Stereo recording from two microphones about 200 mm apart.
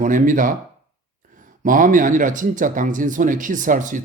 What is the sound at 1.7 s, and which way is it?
Speech, 40° right (ahead or behind).